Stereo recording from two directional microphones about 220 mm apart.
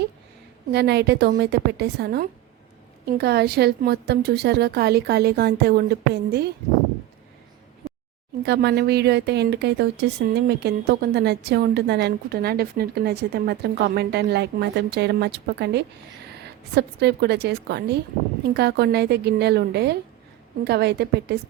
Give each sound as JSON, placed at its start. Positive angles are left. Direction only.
{"t": 0.7, "sound": "speech", "side_deg": -50}
{"t": 8.4, "sound": "speech", "side_deg": -50}